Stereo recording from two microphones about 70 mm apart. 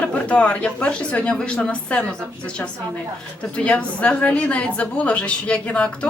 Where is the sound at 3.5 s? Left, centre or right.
Centre.